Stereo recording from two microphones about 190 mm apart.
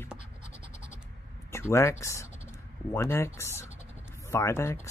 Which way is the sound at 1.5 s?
15° left (ahead or behind).